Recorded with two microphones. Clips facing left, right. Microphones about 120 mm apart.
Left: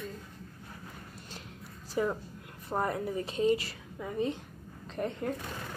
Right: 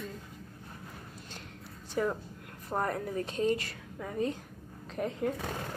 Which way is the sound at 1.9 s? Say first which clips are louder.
Even; centre (ahead or behind).